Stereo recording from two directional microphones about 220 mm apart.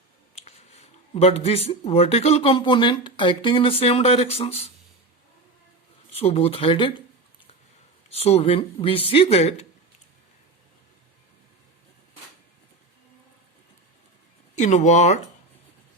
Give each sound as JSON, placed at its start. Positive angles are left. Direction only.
{"t": 0.3, "sound": "speech", "side_deg": 30}
{"t": 6.1, "sound": "speech", "side_deg": 25}
{"t": 8.1, "sound": "speech", "side_deg": 30}
{"t": 14.5, "sound": "speech", "side_deg": 35}